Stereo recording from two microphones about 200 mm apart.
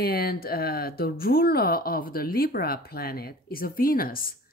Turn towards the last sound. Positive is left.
turn(degrees=45)  # may be behind; listen again after turning